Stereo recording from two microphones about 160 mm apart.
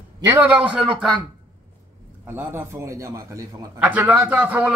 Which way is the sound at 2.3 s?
15° right (ahead or behind).